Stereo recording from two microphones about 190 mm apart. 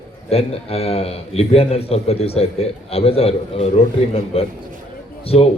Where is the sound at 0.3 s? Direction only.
30° left (ahead or behind).